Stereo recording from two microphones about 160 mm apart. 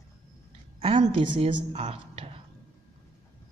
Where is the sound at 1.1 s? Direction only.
30° right (ahead or behind).